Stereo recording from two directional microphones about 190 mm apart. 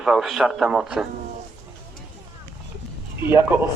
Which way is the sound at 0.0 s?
Centre (ahead or behind).